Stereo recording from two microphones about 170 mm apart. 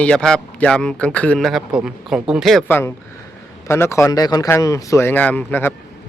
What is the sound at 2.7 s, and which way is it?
Speech, 15° left (ahead or behind).